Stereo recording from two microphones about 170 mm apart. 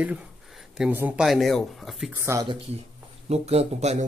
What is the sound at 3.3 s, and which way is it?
Speech, 40° right (ahead or behind).